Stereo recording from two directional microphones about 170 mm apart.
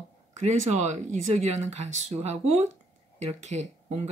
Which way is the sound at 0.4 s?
45° right (ahead or behind).